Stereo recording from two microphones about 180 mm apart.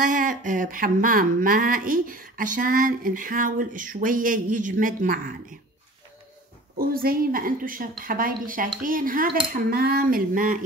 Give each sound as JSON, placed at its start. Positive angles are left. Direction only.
{"t": 0.0, "sound": "speech", "side_deg": -50}
{"t": 6.8, "sound": "speech", "side_deg": -55}